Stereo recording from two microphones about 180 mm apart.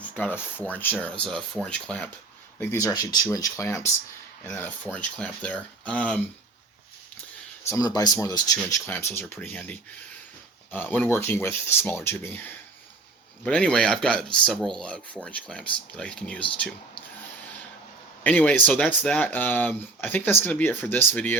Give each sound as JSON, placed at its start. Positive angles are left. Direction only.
{"t": 0.2, "sound": "a man's voice", "side_deg": 10}
{"t": 2.6, "sound": "speech", "side_deg": 20}
{"t": 7.7, "sound": "speech", "side_deg": 20}
{"t": 13.4, "sound": "a man's voice", "side_deg": 5}
{"t": 18.2, "sound": "speech", "side_deg": 10}